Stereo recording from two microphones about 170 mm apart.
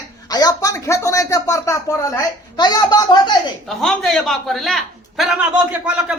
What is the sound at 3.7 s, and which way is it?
A man's voice, centre (ahead or behind).